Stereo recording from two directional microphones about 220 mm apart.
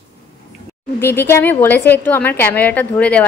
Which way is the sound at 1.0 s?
10° left (ahead or behind).